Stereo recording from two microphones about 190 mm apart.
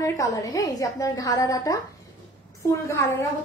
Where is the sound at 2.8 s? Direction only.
15° left (ahead or behind).